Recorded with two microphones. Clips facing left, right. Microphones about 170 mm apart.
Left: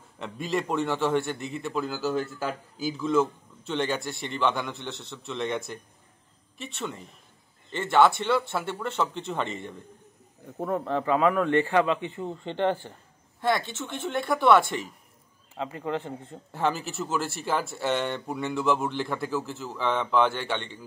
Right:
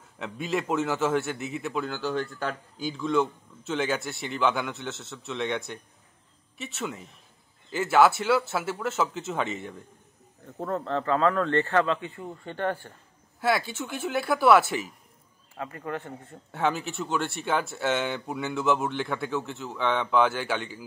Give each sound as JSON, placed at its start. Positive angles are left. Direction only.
{"t": 0.2, "sound": "a man's voice", "side_deg": 0}
{"t": 10.4, "sound": "a man's voice", "side_deg": 10}
{"t": 13.4, "sound": "a man's voice", "side_deg": -5}
{"t": 15.5, "sound": "speech", "side_deg": 20}
{"t": 16.5, "sound": "a man's voice", "side_deg": 0}